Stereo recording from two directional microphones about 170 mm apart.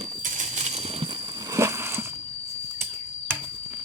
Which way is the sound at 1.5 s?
15° right (ahead or behind).